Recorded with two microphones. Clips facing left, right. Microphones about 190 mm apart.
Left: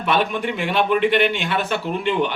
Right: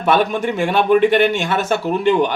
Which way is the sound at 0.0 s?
45° right (ahead or behind).